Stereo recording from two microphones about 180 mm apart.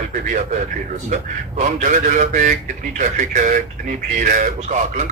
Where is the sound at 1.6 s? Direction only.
45° right (ahead or behind).